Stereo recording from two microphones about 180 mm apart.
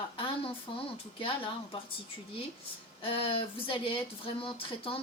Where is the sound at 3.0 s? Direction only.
30° left (ahead or behind).